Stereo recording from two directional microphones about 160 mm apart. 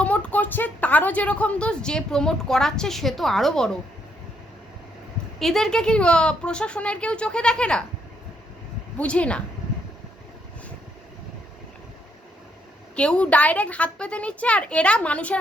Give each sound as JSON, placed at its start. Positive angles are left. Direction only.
{"t": 0.0, "sound": "a woman's voice", "side_deg": 10}
{"t": 5.4, "sound": "a woman's voice", "side_deg": 0}
{"t": 9.0, "sound": "a woman's voice", "side_deg": 10}
{"t": 13.0, "sound": "a woman's voice", "side_deg": 5}